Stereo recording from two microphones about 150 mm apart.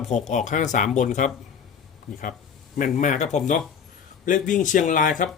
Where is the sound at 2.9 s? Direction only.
55° left (ahead or behind).